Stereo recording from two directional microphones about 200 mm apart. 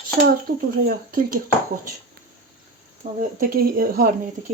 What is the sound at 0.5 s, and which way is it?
Speech, 50° right (ahead or behind).